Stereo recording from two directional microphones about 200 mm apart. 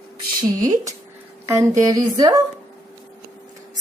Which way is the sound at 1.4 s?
15° right (ahead or behind).